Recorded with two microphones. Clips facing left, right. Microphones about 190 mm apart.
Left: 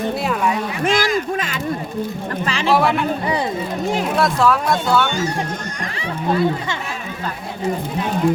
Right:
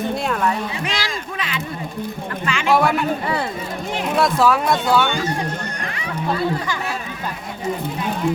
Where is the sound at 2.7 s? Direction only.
Centre (ahead or behind).